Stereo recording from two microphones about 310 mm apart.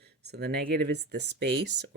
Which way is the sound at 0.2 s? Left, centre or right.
Right.